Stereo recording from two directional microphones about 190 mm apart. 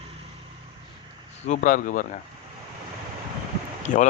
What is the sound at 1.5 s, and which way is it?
Speech, 45° left (ahead or behind).